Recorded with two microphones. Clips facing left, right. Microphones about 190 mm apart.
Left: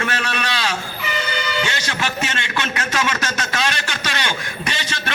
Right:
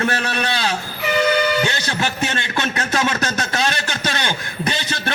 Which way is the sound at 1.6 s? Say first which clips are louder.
Right 2 dB; 35° right (ahead or behind).